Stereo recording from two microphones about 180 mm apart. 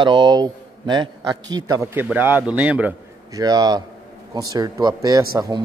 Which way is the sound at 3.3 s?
20° right (ahead or behind).